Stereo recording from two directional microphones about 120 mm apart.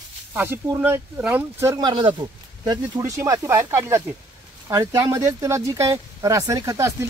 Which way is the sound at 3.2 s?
25° right (ahead or behind).